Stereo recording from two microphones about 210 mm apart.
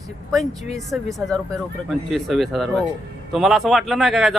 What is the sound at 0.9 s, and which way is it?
A woman's voice, centre (ahead or behind).